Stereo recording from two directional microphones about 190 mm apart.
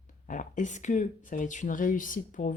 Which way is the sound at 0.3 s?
40° left (ahead or behind).